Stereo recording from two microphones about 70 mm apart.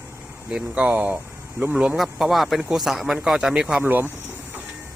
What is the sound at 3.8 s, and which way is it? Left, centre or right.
Speech, right.